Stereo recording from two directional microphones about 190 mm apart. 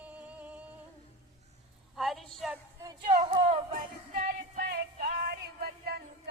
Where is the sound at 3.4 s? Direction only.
40° right (ahead or behind).